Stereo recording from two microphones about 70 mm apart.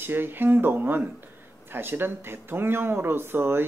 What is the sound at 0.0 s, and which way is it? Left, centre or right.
Speech, right.